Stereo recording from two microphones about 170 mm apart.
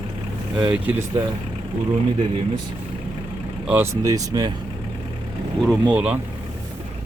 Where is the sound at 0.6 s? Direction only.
10° right (ahead or behind).